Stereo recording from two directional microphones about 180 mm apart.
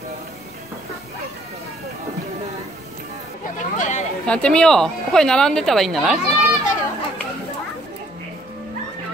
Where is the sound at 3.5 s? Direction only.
45° left (ahead or behind).